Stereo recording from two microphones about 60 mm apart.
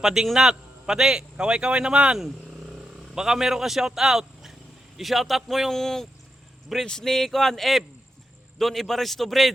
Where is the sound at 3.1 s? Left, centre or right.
Centre.